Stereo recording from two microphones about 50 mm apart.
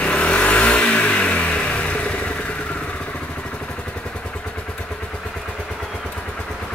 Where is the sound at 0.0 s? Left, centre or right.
Left.